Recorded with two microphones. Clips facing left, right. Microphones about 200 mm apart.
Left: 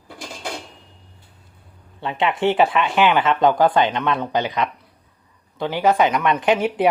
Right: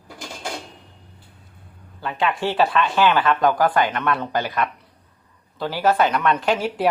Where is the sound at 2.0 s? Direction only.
25° left (ahead or behind).